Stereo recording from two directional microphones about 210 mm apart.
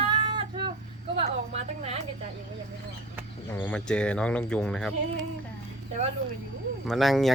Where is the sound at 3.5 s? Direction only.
10° left (ahead or behind).